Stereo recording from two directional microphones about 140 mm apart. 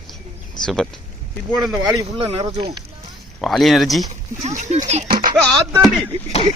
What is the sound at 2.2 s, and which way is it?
Speech, 40° right (ahead or behind).